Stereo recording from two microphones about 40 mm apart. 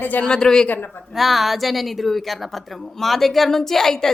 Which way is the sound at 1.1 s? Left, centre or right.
Centre.